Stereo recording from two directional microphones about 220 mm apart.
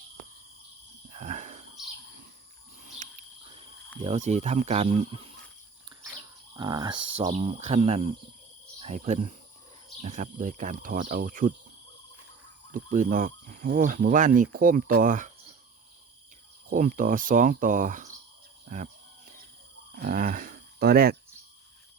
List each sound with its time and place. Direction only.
1.1 s a sound: 35° right (ahead or behind)
3.0 s insect: 30° right (ahead or behind)
4.0 s speech: 30° right (ahead or behind)
6.6 s speech: 20° right (ahead or behind); by 11.5 s 40° right (ahead or behind)
12.7 s speech: 35° right (ahead or behind)
16.6 s speech: 40° right (ahead or behind)
20.0 s speech: 35° right (ahead or behind)